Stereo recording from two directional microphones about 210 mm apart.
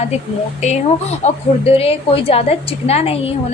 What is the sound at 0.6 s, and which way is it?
A woman's voice, 35° left (ahead or behind).